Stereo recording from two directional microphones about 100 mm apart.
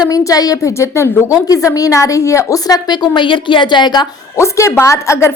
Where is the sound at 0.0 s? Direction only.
35° left (ahead or behind).